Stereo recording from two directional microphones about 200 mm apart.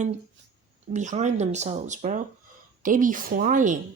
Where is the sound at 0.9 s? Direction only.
35° right (ahead or behind).